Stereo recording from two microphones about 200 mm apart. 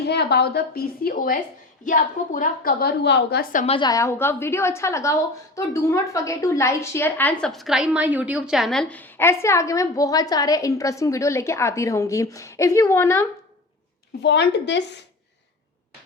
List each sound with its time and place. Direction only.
0.1 s a woman's voice: 55° left (ahead or behind)
3.7 s a woman's voice: 20° left (ahead or behind)
14.2 s speech: 60° left (ahead or behind)